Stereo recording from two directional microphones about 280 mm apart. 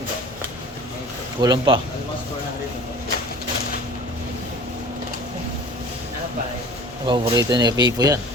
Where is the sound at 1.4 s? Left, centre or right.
Centre.